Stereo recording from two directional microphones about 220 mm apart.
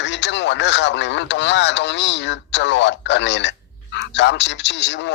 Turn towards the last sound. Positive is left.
turn(degrees=55)  # may be behind; listen again after turning